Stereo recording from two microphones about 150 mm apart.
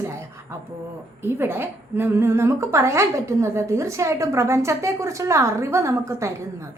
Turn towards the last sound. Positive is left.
turn(degrees=-20)  # may be behind; listen again after turning